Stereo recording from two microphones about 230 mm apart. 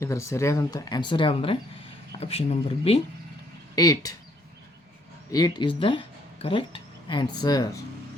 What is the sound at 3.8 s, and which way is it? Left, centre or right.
Speech, centre.